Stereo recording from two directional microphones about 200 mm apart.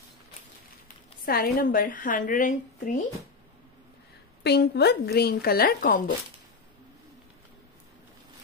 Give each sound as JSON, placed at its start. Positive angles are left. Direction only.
{"t": 1.2, "sound": "a woman's voice", "side_deg": 50}
{"t": 4.4, "sound": "a woman's voice", "side_deg": 55}